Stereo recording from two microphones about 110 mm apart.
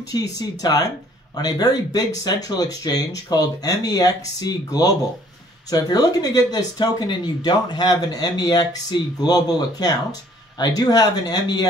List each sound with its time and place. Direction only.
0.1 s speech: 35° left (ahead or behind)